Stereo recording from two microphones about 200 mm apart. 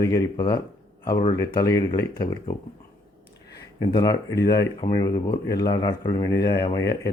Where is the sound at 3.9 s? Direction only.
20° left (ahead or behind).